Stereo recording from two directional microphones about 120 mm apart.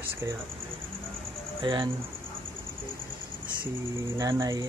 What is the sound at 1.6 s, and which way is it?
Speech, 40° right (ahead or behind).